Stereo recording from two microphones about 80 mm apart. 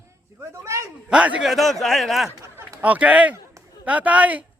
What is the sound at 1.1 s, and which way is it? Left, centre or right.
Speech, centre.